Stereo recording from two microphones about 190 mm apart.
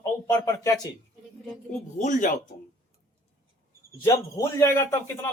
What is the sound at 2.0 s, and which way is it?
Speech, 40° left (ahead or behind).